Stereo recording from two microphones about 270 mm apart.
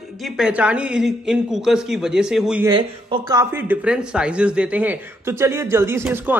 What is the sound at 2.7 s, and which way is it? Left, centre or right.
Speech, centre.